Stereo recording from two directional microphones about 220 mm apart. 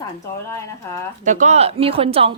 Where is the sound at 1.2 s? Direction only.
35° right (ahead or behind).